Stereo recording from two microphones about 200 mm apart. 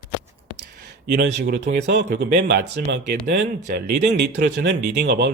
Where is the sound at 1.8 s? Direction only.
60° right (ahead or behind).